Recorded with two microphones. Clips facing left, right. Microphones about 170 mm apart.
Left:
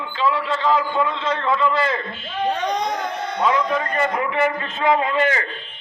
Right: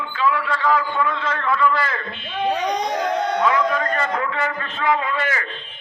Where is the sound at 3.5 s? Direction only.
20° left (ahead or behind).